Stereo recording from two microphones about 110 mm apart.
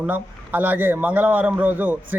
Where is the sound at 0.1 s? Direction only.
15° right (ahead or behind).